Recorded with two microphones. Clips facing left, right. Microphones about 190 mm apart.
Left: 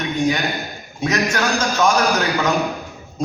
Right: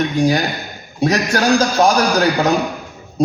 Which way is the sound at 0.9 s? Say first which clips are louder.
Right 4 dB; 35° right (ahead or behind).